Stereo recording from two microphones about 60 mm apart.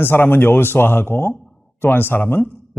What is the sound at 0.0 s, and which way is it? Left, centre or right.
Speech, left.